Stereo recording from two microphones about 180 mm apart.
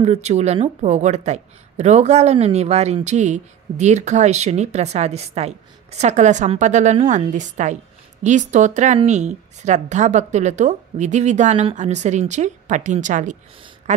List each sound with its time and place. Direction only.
0.0 s a woman's voice: 35° right (ahead or behind)